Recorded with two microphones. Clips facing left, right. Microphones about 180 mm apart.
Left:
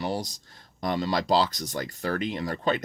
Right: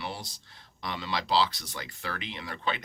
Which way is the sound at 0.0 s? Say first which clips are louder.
Left 8 dB; 45° left (ahead or behind).